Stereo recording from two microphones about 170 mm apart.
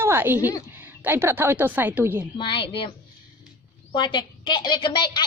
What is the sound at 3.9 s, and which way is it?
A woman's voice, 30° left (ahead or behind).